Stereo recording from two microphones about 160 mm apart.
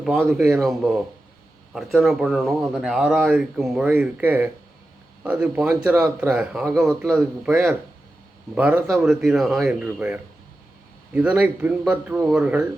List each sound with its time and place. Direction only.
0.0 s speech: centre (ahead or behind)